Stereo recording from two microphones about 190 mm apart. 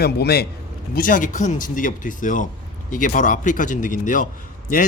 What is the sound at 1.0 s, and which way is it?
Speech, 45° left (ahead or behind).